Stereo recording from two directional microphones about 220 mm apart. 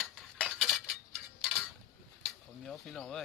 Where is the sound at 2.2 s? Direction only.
Centre (ahead or behind).